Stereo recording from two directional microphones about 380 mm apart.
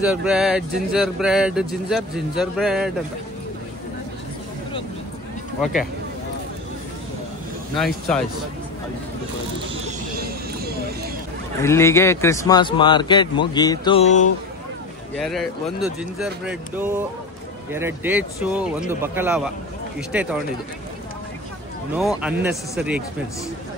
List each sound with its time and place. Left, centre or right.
0.0 s speech: centre
7.7 s speech: centre
9.8 s a sound: right
11.6 s speech: centre
15.2 s speech: centre
21.9 s speech: centre